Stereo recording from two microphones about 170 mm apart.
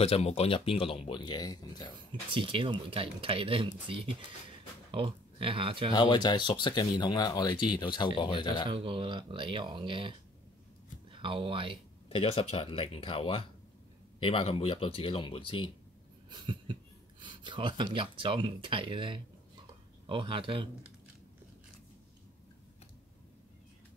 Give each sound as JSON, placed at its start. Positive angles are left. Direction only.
{"t": 0.0, "sound": "speech", "side_deg": 40}
{"t": 2.3, "sound": "speech", "side_deg": -30}
{"t": 5.9, "sound": "speech", "side_deg": 25}
{"t": 8.6, "sound": "speech", "side_deg": -30}
{"t": 12.1, "sound": "speech", "side_deg": 35}
{"t": 16.3, "sound": "a sound", "side_deg": -30}
{"t": 17.2, "sound": "speech", "side_deg": -25}